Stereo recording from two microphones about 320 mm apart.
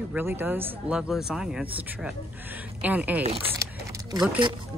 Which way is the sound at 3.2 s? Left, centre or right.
Centre.